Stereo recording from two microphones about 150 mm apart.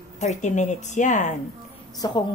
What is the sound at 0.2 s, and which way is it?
A woman's voice, 50° left (ahead or behind).